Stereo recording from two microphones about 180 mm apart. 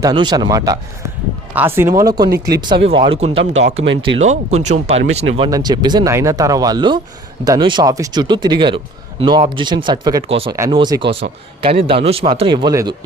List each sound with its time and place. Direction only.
0.0 s speech: 25° right (ahead or behind)
5.5 s speech: 20° right (ahead or behind)
10.2 s speech: 30° right (ahead or behind)